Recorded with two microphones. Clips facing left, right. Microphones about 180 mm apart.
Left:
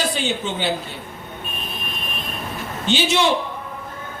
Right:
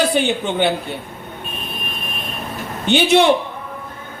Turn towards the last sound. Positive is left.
turn(degrees=-60)  # may be behind; listen again after turning